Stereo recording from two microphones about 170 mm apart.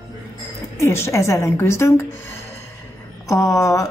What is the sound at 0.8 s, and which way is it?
A woman's voice, 15° left (ahead or behind).